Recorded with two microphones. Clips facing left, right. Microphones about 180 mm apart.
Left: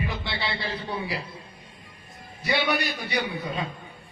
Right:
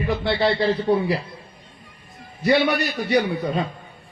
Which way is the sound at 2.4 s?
45° right (ahead or behind).